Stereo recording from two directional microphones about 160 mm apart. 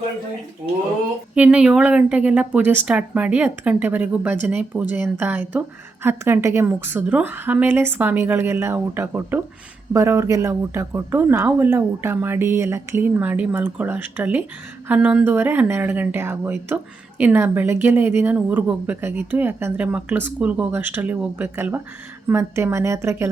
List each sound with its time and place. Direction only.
0.6 s speech: 60° right (ahead or behind)
1.4 s speech: 5° right (ahead or behind)